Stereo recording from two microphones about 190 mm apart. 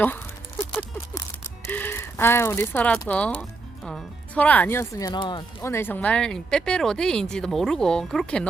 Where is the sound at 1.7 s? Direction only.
10° left (ahead or behind).